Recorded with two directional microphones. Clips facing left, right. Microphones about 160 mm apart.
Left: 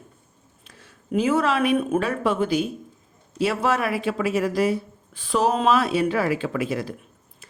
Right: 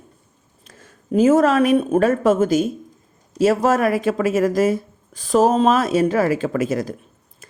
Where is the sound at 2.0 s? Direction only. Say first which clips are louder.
Right 7 dB; 45° right (ahead or behind).